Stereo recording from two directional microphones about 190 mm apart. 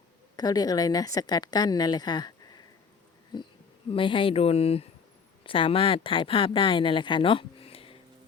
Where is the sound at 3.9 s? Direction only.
25° left (ahead or behind).